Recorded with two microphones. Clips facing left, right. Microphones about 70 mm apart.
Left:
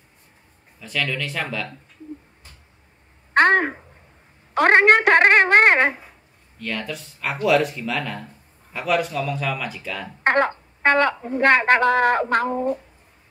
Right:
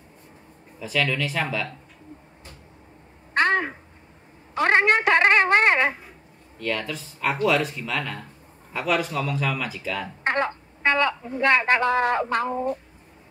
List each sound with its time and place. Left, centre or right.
0.7 s speech: centre
3.3 s a sound: left
4.6 s speech: left
6.6 s speech: centre
10.2 s a woman's voice: left